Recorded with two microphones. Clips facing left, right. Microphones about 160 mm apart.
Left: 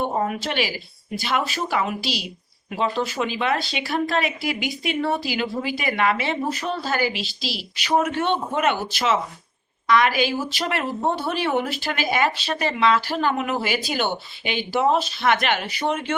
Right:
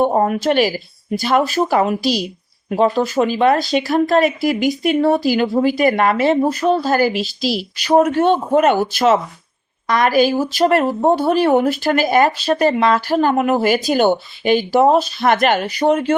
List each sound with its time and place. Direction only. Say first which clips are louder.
0.0 s speech: right 9 dB; 45° right (ahead or behind)